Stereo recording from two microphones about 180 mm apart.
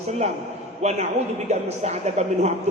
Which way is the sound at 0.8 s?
40° right (ahead or behind).